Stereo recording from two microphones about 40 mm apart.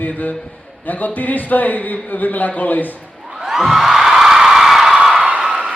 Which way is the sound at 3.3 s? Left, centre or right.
Centre.